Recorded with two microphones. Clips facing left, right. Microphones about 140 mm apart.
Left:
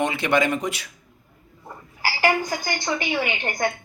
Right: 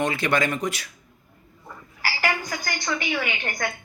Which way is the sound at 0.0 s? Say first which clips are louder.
Left 2 dB; 25° left (ahead or behind).